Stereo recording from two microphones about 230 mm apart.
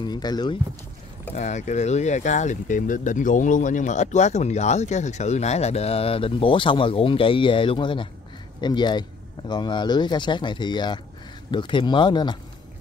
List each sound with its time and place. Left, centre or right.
0.0 s speech: centre
1.3 s speech: left